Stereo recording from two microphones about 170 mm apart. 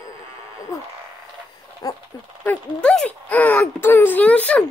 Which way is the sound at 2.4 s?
5° left (ahead or behind).